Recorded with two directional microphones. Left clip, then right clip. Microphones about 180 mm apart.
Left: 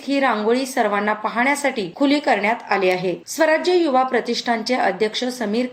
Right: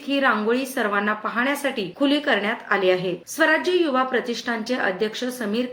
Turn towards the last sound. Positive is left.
turn(degrees=20)  # may be behind; listen again after turning